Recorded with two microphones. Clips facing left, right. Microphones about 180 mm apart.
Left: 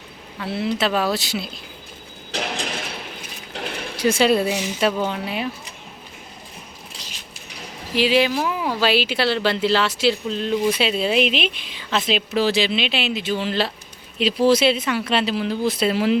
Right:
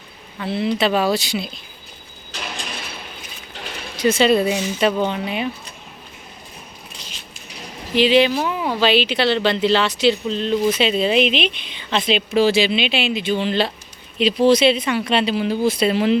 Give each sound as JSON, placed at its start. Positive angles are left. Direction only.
{"t": 0.3, "sound": "speech", "side_deg": 5}
{"t": 2.3, "sound": "mechanisms", "side_deg": 85}
{"t": 3.9, "sound": "speech", "side_deg": 10}
{"t": 7.9, "sound": "speech", "side_deg": 5}